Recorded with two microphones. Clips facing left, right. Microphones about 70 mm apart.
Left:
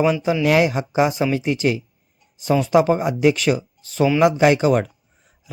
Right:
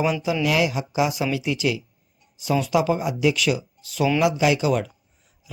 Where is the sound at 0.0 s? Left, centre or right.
Left.